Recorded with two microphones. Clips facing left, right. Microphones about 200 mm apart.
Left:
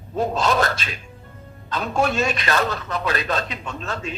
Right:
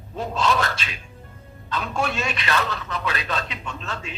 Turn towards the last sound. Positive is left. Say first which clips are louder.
# left 3 dB
turn(degrees=40)  # may be behind; listen again after turning